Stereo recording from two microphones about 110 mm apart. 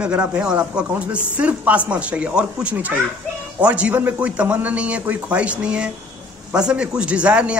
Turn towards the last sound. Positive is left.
turn(degrees=-10)  # may be behind; listen again after turning